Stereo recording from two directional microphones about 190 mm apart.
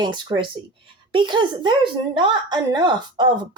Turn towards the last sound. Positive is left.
turn(degrees=-25)  # may be behind; listen again after turning